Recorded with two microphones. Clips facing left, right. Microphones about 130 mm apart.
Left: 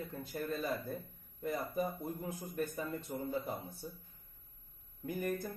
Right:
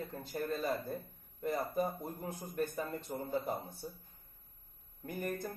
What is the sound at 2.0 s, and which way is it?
Speech, 25° right (ahead or behind).